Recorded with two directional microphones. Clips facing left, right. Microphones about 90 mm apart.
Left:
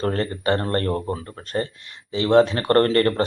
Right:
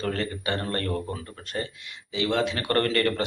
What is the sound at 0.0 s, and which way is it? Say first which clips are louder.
Speech: left 6 dB; 35° left (ahead or behind).